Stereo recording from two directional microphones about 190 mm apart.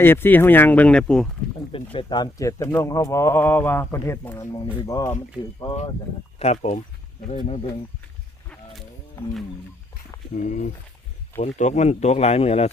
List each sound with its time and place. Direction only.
0.0 s speech: 10° left (ahead or behind)
1.7 s speech: 30° left (ahead or behind)
6.4 s speech: 35° left (ahead or behind)
10.3 s speech: 40° left (ahead or behind)